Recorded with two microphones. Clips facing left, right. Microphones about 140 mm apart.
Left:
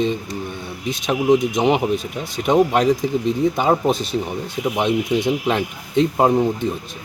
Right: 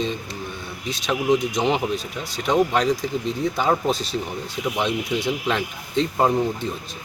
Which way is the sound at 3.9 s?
55° left (ahead or behind).